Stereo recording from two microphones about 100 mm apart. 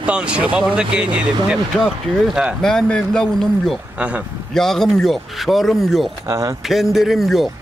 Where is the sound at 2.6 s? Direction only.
5° left (ahead or behind).